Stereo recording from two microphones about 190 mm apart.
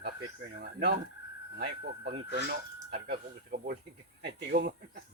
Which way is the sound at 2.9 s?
50° right (ahead or behind).